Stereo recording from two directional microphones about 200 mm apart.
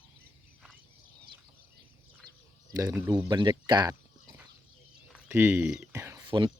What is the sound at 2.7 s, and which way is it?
Speech, 15° right (ahead or behind).